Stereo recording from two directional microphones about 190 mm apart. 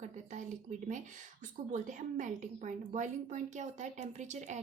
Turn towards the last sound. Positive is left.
turn(degrees=-40)  # may be behind; listen again after turning